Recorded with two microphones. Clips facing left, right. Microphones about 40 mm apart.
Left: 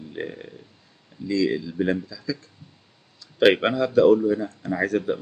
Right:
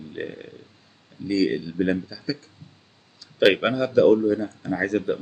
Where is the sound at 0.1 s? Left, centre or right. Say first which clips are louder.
Even; centre.